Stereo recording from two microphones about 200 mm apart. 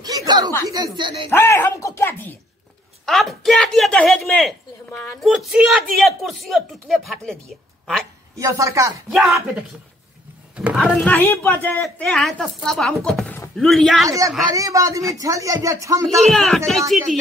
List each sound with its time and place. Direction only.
0.0 s a sound: 20° right (ahead or behind)
0.9 s speech: 25° right (ahead or behind)
1.3 s speech: 10° left (ahead or behind)
8.4 s speech: 15° right (ahead or behind)
10.5 s speech: 5° right (ahead or behind)
14.0 s speech: 15° right (ahead or behind)
16.3 s speech: centre (ahead or behind)